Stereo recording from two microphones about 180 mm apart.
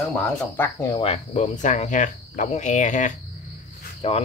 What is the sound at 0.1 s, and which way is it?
Speech, 15° left (ahead or behind).